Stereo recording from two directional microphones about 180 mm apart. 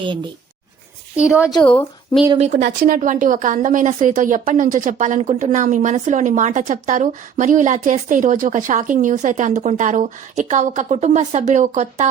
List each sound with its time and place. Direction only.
0.0 s speech: 25° right (ahead or behind)
1.1 s a woman's voice: 5° right (ahead or behind)
1.6 s a woman's voice: 10° left (ahead or behind)
2.5 s a woman's voice: 50° right (ahead or behind)